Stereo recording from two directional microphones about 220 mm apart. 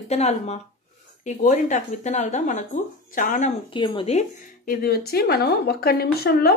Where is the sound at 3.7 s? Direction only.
20° left (ahead or behind).